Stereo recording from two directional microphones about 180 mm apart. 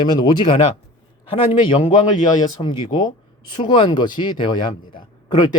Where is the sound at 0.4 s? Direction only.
30° left (ahead or behind).